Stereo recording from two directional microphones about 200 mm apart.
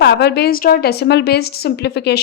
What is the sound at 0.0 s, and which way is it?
A woman's voice, 55° left (ahead or behind).